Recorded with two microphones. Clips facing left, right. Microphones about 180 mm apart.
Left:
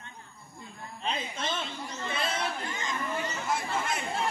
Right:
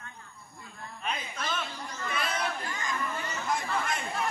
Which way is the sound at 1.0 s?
25° left (ahead or behind).